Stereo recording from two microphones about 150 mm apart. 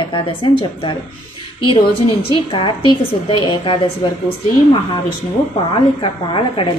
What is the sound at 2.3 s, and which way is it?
A woman's voice, 35° left (ahead or behind).